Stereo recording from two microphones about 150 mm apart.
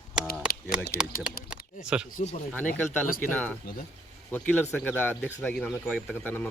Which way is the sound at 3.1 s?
70° left (ahead or behind).